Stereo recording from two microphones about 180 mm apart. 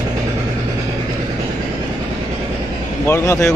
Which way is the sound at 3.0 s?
15° left (ahead or behind).